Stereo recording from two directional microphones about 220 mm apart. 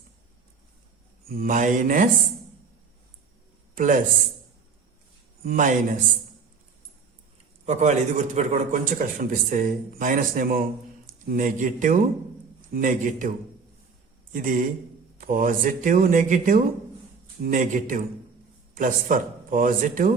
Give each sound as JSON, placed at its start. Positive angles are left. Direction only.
{"t": 1.3, "sound": "speech", "side_deg": -40}
{"t": 3.8, "sound": "speech", "side_deg": -35}
{"t": 5.5, "sound": "speech", "side_deg": -35}
{"t": 7.6, "sound": "a man's voice", "side_deg": -30}
{"t": 14.3, "sound": "speech", "side_deg": -35}